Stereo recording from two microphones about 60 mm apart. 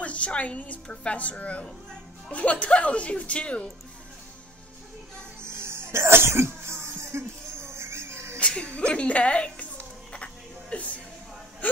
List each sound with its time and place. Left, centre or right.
0.0 s a woman's voice: left
5.4 s cough: right
8.4 s music: centre
11.6 s wail: left